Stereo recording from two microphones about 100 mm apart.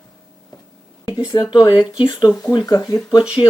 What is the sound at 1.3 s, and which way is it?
Speech, 45° left (ahead or behind).